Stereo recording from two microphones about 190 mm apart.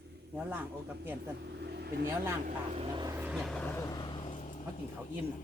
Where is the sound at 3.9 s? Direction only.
25° left (ahead or behind).